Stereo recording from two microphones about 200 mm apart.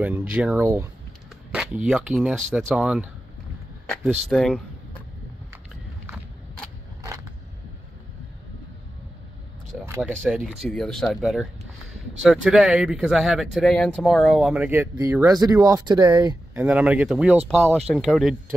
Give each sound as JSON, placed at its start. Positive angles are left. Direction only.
{"t": 0.0, "sound": "speech", "side_deg": -10}
{"t": 9.8, "sound": "a sound", "side_deg": -10}
{"t": 10.3, "sound": "speech", "side_deg": 0}